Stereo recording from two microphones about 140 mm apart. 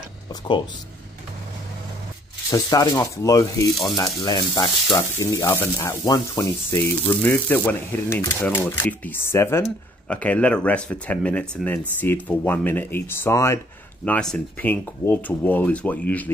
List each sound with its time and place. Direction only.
2.5 s speech: 25° left (ahead or behind)
4.2 s sizzle: 30° left (ahead or behind)
4.9 s speech: 20° left (ahead or behind)
14.0 s speech: 10° left (ahead or behind)